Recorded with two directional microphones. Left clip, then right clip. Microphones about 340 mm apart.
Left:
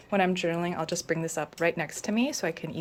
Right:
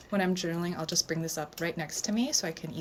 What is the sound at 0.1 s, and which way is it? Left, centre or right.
Speech, centre.